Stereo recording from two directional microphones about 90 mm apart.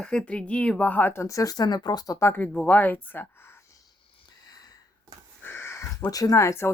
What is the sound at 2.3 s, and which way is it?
Speech, 15° left (ahead or behind).